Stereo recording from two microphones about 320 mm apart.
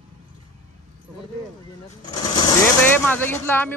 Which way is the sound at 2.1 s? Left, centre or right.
Centre.